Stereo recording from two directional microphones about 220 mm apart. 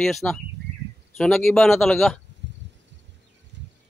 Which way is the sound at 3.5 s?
55° right (ahead or behind).